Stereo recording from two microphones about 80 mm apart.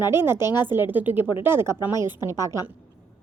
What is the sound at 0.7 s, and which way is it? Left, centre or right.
A woman's voice, right.